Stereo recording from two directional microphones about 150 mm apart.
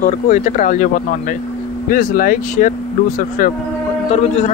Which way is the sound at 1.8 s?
75° left (ahead or behind).